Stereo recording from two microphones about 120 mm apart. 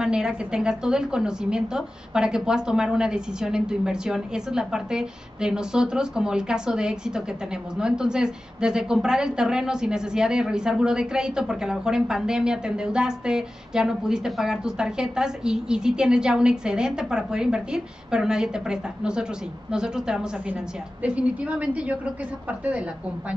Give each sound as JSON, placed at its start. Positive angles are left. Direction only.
{"t": 0.0, "sound": "a woman's voice", "side_deg": -5}